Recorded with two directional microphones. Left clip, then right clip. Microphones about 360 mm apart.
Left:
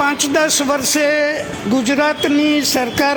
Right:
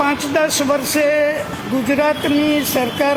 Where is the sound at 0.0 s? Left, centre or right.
Left.